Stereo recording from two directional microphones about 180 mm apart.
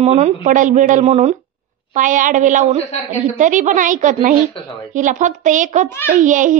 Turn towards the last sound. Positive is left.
turn(degrees=-45)  # may be behind; listen again after turning